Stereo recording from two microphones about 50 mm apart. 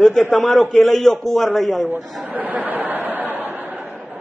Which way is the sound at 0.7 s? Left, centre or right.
Centre.